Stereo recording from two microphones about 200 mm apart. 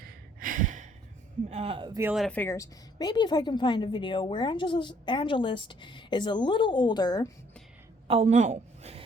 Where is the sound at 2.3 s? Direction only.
10° left (ahead or behind).